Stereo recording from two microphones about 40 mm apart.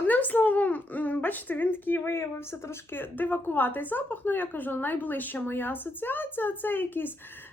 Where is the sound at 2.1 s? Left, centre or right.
Left.